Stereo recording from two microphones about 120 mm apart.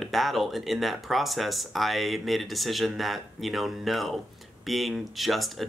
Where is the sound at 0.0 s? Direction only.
Centre (ahead or behind).